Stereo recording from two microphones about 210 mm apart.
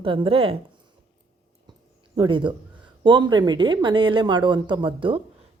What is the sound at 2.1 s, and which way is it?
Speech, 20° right (ahead or behind).